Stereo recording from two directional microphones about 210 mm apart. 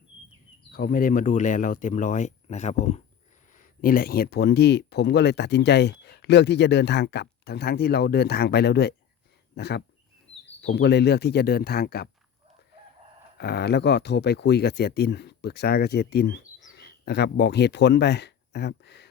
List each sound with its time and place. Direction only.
0.7 s speech: 45° left (ahead or behind)
13.4 s speech: 50° left (ahead or behind)